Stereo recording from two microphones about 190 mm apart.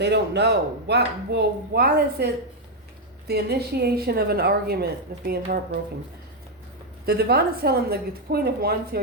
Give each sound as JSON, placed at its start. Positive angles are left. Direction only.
{"t": 0.0, "sound": "a woman's voice", "side_deg": -60}
{"t": 7.0, "sound": "a woman's voice", "side_deg": -55}